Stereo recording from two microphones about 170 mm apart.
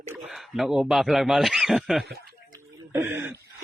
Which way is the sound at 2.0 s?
65° right (ahead or behind).